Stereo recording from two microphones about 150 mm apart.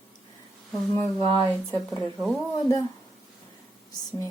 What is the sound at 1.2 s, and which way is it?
Speech, 35° right (ahead or behind).